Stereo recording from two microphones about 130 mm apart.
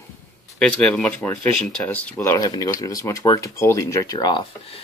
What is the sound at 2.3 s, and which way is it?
Speech, 30° left (ahead or behind).